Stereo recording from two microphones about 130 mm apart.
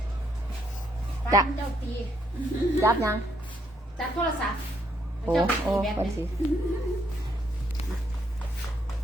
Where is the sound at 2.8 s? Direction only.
20° right (ahead or behind).